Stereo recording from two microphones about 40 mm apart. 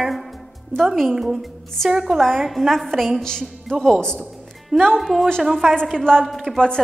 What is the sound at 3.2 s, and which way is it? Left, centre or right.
A woman's voice, centre.